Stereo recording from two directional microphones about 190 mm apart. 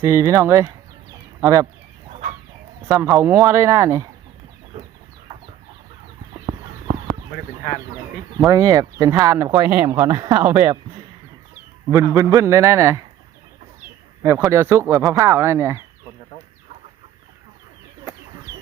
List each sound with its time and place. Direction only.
0.0 s speech: 15° right (ahead or behind)
2.8 s speech: 10° right (ahead or behind)
8.4 s speech: 15° right (ahead or behind)
11.9 s speech: 15° right (ahead or behind)
14.2 s speech: 15° right (ahead or behind)